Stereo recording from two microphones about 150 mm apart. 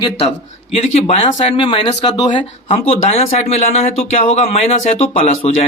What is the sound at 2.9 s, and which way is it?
Speech, 45° left (ahead or behind).